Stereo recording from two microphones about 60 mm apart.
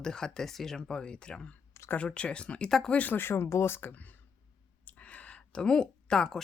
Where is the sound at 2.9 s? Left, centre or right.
Left.